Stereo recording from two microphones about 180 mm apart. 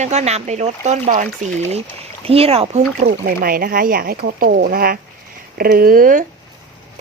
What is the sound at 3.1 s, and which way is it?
Speech, 55° right (ahead or behind).